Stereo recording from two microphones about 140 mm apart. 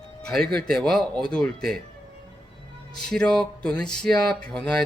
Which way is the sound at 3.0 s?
5° left (ahead or behind).